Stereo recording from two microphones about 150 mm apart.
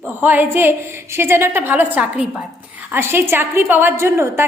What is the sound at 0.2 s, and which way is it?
A woman's voice, 15° right (ahead or behind).